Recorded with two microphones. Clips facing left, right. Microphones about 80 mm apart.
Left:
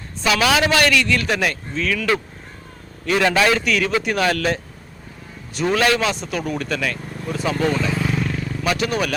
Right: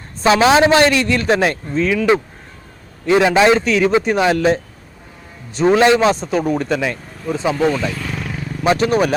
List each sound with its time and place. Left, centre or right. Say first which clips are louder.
0.2 s speech: right 6 dB; right
7.9 s wild animals: left 3 dB; centre
8.6 s speech: right 7 dB; right